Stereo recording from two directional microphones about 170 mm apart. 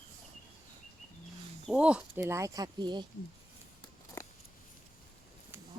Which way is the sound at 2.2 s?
20° right (ahead or behind).